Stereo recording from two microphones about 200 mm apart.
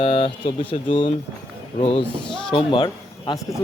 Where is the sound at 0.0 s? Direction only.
25° left (ahead or behind).